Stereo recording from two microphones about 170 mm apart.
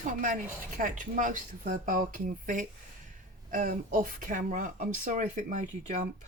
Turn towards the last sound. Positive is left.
turn(degrees=-45)  # may be behind; listen again after turning